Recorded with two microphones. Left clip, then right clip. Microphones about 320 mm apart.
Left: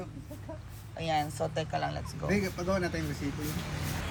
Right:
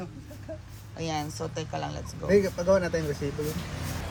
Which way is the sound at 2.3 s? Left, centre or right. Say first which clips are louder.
Right 9 dB; right.